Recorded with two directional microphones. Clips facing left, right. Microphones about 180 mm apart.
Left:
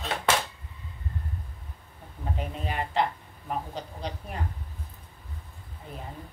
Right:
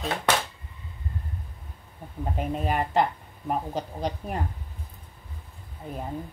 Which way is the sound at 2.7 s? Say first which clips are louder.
Right 3 dB; 45° right (ahead or behind).